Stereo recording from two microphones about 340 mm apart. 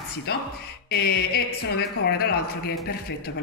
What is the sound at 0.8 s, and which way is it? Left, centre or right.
Mantra, left.